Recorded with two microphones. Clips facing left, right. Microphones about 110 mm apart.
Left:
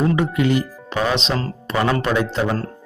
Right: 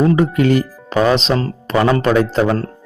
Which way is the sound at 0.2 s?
45° right (ahead or behind).